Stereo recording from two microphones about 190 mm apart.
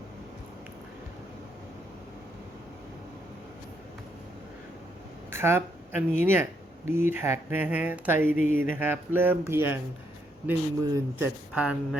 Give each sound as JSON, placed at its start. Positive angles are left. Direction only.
{"t": 5.3, "sound": "a sound", "side_deg": -10}
{"t": 6.2, "sound": "speech", "side_deg": -10}
{"t": 11.5, "sound": "speech", "side_deg": -5}